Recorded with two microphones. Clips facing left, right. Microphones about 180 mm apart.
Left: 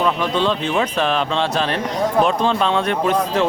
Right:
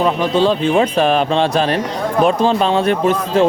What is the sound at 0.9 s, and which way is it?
A man's voice, 50° right (ahead or behind).